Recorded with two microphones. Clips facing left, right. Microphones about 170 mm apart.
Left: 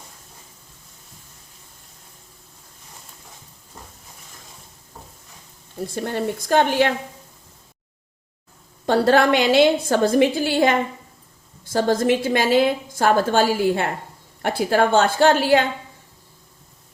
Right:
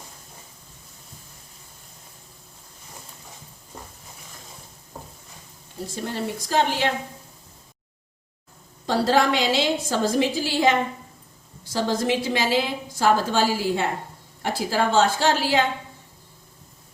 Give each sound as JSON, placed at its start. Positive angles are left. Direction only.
{"t": 5.9, "sound": "a woman's voice", "side_deg": 55}
{"t": 8.9, "sound": "a woman's voice", "side_deg": 60}